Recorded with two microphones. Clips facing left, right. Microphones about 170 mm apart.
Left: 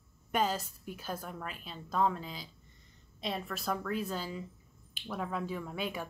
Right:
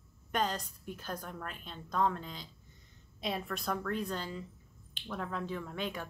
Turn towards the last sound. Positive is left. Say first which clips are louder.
# left 1 dB
turn(degrees=10)  # may be behind; listen again after turning